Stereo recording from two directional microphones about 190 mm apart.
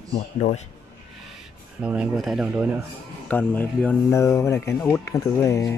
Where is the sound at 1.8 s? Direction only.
5° right (ahead or behind); by 5.7 s 15° left (ahead or behind).